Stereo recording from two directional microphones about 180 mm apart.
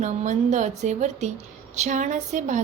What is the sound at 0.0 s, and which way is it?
A woman's voice, 40° right (ahead or behind).